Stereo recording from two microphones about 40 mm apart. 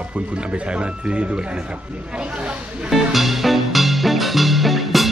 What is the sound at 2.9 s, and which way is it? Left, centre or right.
Music, centre.